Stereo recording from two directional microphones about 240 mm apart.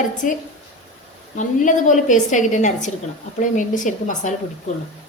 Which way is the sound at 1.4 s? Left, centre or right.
Left.